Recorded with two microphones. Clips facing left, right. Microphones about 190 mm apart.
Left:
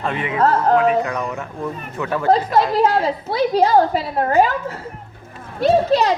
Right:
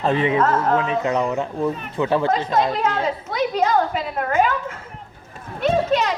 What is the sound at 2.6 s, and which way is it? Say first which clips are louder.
A child's voice: left 4 dB; 35° left (ahead or behind).